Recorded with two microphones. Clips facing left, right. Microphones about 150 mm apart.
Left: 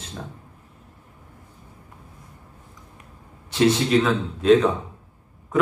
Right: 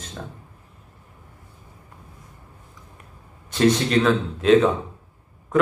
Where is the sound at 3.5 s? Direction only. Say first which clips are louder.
Even; 10° left (ahead or behind).